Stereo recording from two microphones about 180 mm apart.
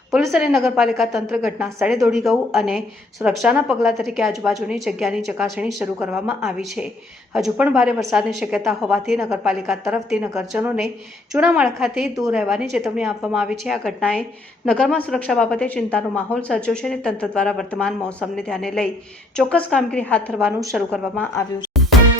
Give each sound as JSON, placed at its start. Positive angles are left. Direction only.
{"t": 0.1, "sound": "a woman's voice", "side_deg": 0}
{"t": 20.4, "sound": "a woman's voice", "side_deg": -15}
{"t": 20.7, "sound": "a woman's voice", "side_deg": 5}